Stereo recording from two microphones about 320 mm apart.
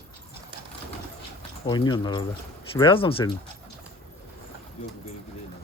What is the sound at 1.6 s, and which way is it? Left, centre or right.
Speech, centre.